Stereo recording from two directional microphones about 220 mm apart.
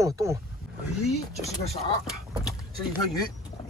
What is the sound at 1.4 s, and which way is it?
Speech, 30° left (ahead or behind).